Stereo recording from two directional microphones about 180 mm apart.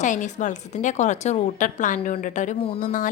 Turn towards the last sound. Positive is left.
turn(degrees=45)  # may be behind; listen again after turning